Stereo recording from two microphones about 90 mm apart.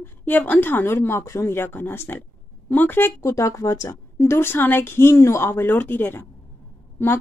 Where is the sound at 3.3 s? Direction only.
35° left (ahead or behind).